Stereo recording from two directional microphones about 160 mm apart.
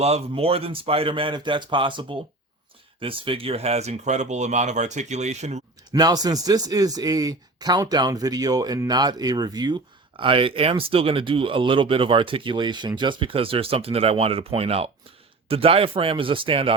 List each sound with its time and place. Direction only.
0.0 s speech: 40° right (ahead or behind)
5.9 s a man's voice: 25° right (ahead or behind)